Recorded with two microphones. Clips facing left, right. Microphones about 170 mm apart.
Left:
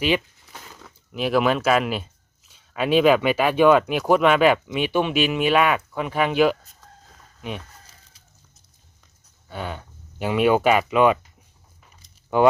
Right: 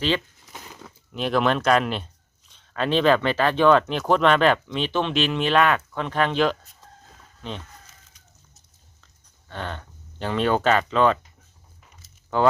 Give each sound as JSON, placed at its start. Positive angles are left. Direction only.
{"t": 0.9, "sound": "speech", "side_deg": 5}
{"t": 9.5, "sound": "speech", "side_deg": 10}
{"t": 12.3, "sound": "speech", "side_deg": 15}